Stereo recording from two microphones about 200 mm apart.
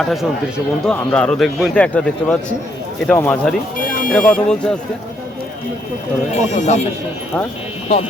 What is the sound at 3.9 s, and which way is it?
Buzzer, 45° left (ahead or behind).